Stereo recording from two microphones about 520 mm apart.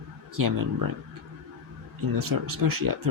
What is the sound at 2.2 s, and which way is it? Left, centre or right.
Speech, right.